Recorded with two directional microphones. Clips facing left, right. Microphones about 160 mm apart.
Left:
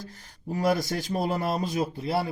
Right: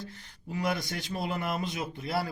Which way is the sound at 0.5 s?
40° left (ahead or behind).